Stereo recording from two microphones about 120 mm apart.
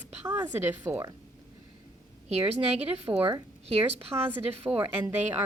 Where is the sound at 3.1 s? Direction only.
50° right (ahead or behind).